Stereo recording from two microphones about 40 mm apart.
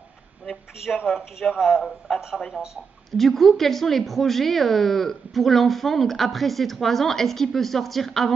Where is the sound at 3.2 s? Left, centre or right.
Centre.